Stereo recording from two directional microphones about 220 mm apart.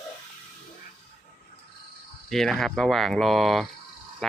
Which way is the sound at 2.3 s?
Centre (ahead or behind).